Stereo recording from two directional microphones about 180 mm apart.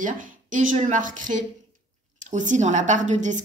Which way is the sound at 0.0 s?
45° right (ahead or behind).